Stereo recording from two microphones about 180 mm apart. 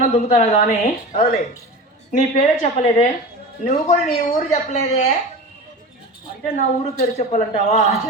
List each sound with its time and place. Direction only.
0.0 s a woman's voice: 40° left (ahead or behind)
6.8 s a woman's voice: 40° left (ahead or behind)